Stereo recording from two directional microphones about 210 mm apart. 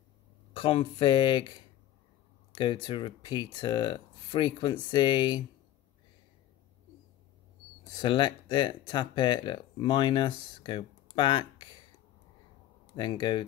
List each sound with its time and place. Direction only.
0.6 s speech: 25° left (ahead or behind)
8.0 s speech: 20° left (ahead or behind)
12.9 s speech: 20° left (ahead or behind)